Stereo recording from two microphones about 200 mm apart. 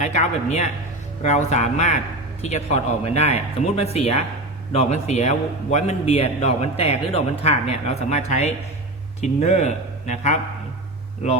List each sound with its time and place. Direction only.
0.0 s a man's voice: 35° left (ahead or behind)